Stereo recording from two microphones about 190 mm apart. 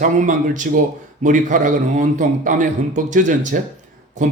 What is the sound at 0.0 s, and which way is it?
A man's voice, 45° right (ahead or behind).